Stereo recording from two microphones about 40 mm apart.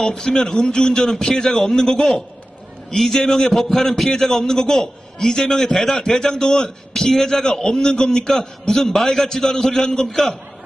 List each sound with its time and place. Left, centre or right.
0.2 s a man's voice: centre